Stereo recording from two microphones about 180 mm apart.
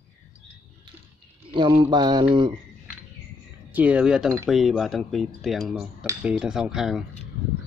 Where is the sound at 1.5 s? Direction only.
25° right (ahead or behind).